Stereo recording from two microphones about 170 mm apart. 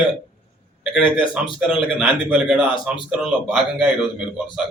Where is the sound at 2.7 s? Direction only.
30° left (ahead or behind).